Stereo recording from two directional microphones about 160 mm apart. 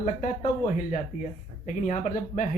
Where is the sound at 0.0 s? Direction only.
50° left (ahead or behind).